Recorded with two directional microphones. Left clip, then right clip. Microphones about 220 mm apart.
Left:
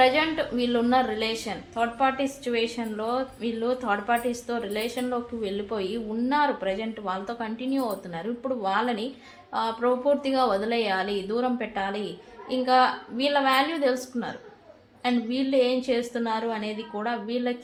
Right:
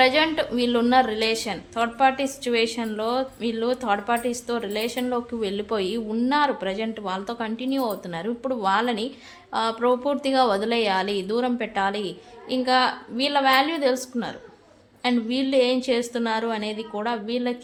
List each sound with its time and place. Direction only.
0.0 s a woman's voice: 35° right (ahead or behind)